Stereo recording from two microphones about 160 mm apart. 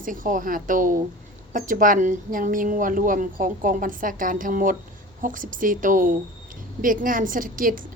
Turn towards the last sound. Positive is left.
turn(degrees=-60)  # may be behind; listen again after turning